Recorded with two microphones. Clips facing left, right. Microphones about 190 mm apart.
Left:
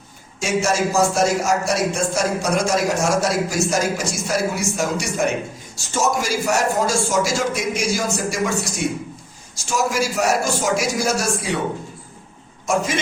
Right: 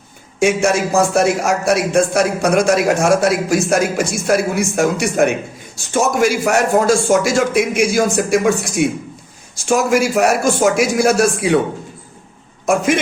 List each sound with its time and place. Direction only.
0.3 s a man's voice: 60° right (ahead or behind)
12.6 s a man's voice: 60° right (ahead or behind)